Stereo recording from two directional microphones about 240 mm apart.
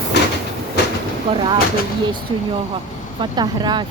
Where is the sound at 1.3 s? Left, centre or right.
Right.